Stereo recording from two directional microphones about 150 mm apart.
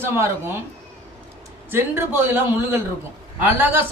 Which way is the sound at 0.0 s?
15° right (ahead or behind).